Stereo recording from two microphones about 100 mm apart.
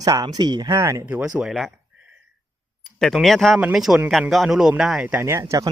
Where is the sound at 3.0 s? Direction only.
Centre (ahead or behind).